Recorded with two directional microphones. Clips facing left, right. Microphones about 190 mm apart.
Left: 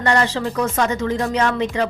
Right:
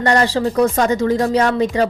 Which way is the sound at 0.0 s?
35° right (ahead or behind).